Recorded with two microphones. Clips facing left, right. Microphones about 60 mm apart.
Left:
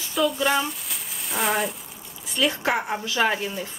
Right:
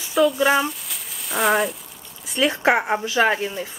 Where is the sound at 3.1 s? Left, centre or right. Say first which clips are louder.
Right 2 dB; centre.